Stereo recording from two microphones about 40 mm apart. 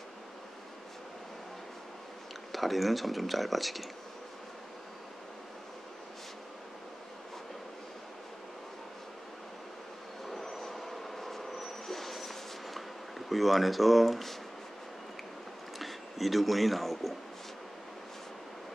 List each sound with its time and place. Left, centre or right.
2.5 s speech: centre
10.2 s vehicle: centre
13.3 s speech: centre
15.8 s speech: centre